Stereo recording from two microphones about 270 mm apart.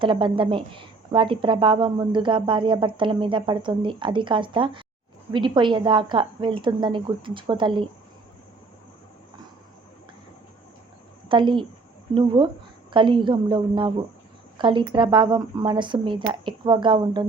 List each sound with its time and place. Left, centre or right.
0.0 s speech: centre
11.3 s speech: centre